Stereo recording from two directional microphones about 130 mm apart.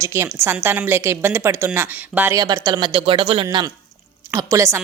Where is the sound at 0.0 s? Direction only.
20° right (ahead or behind).